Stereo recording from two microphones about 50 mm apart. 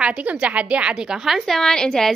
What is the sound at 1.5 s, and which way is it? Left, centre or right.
Speech, centre.